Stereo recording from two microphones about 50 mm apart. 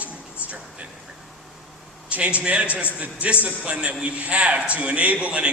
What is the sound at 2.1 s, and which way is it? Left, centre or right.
A man's voice, right.